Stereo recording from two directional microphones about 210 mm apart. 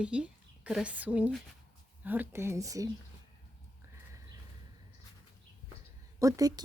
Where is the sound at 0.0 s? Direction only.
5° right (ahead or behind).